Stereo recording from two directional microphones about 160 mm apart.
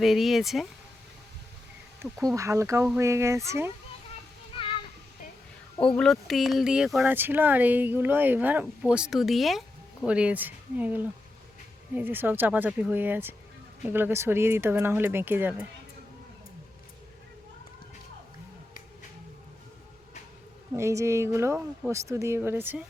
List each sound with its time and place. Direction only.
0.0 s speech: centre (ahead or behind)
2.0 s speech: 20° right (ahead or behind)
6.0 s speech: centre (ahead or behind)
20.7 s speech: 15° right (ahead or behind)